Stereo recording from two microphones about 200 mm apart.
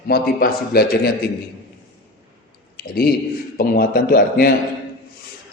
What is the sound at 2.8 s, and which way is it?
A man's voice, 50° left (ahead or behind).